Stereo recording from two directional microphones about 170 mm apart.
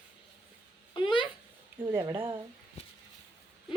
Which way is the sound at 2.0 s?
30° right (ahead or behind).